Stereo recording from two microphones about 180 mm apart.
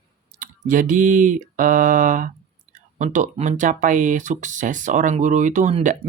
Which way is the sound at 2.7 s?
45° right (ahead or behind).